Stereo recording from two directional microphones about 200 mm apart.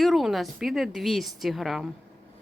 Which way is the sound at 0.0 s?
Centre (ahead or behind).